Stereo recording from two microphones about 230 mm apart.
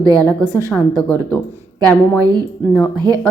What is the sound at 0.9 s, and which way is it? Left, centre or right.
Speech, centre.